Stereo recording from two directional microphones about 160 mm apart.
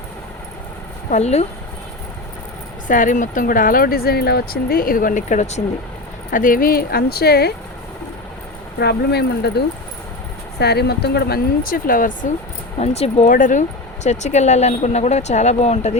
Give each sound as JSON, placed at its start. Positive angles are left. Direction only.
{"t": 1.1, "sound": "speech", "side_deg": 45}
{"t": 2.8, "sound": "speech", "side_deg": 55}
{"t": 6.3, "sound": "speech", "side_deg": 60}
{"t": 8.8, "sound": "speech", "side_deg": 90}
{"t": 12.8, "sound": "speech", "side_deg": 40}